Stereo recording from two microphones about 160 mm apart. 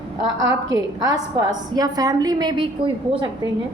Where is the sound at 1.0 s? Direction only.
25° right (ahead or behind).